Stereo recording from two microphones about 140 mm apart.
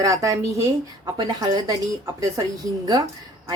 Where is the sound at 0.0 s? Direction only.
25° right (ahead or behind).